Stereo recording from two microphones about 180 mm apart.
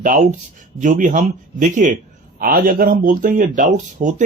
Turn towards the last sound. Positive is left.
turn(degrees=-45)  # may be behind; listen again after turning